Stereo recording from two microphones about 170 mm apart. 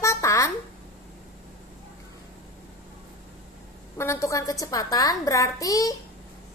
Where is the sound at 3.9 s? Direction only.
15° left (ahead or behind).